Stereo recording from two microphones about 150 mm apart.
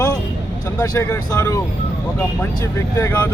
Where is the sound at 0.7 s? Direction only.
25° left (ahead or behind).